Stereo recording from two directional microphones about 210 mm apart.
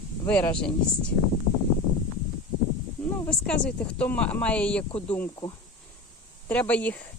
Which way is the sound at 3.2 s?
5° left (ahead or behind).